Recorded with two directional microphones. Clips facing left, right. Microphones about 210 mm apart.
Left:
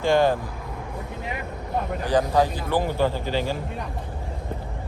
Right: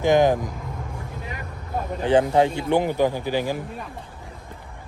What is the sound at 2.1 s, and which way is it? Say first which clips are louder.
A man's voice: right 3 dB; 25° right (ahead or behind).